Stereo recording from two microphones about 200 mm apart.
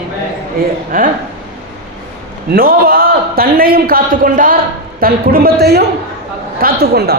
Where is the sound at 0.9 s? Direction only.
45° right (ahead or behind).